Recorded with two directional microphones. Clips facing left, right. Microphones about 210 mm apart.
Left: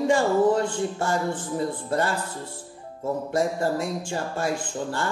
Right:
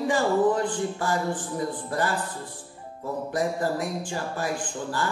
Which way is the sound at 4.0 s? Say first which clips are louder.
Left 2 dB; 25° left (ahead or behind).